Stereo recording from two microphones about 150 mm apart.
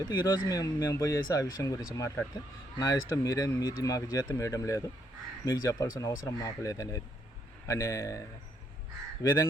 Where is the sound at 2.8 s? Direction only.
20° left (ahead or behind).